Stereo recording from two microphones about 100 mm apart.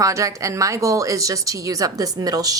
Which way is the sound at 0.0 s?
35° right (ahead or behind).